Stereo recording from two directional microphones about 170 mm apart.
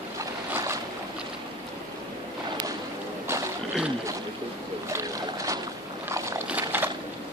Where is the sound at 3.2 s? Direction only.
15° right (ahead or behind).